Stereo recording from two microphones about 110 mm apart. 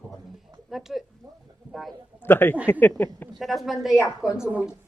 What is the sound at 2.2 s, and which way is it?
Speech, 20° left (ahead or behind).